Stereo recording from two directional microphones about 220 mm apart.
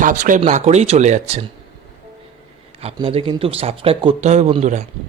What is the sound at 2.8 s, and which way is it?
Speech, 25° right (ahead or behind).